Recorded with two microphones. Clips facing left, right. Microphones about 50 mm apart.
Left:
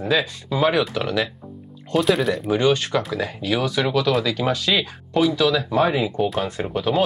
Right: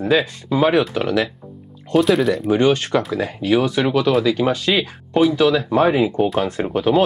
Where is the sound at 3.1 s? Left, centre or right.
Centre.